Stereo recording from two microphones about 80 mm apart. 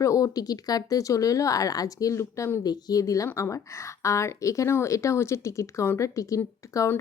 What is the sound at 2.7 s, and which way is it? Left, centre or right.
A woman's voice, left.